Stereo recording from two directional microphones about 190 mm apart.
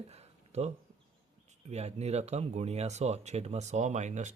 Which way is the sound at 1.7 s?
35° right (ahead or behind).